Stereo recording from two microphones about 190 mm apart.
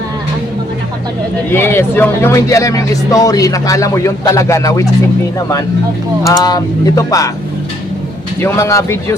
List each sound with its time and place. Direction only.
1.5 s speech: 10° left (ahead or behind)
6.2 s speech: 20° left (ahead or behind)
8.4 s speech: 15° left (ahead or behind)